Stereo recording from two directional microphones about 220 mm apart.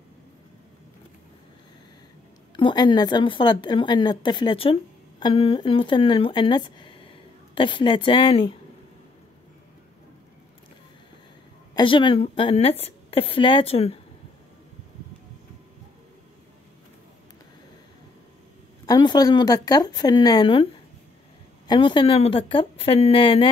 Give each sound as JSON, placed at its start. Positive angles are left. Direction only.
{"t": 2.5, "sound": "a woman's voice", "side_deg": 20}
{"t": 11.7, "sound": "a woman's voice", "side_deg": 20}
{"t": 18.9, "sound": "speech", "side_deg": 20}
{"t": 21.6, "sound": "a woman's voice", "side_deg": 20}